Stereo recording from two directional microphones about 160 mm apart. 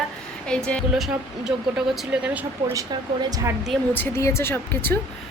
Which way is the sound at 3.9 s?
15° left (ahead or behind).